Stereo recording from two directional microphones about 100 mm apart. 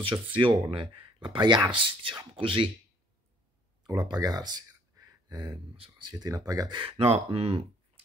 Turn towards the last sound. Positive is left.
turn(degrees=-70)  # may be behind; listen again after turning